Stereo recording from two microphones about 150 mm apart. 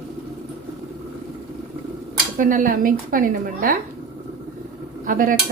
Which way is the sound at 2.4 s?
60° right (ahead or behind).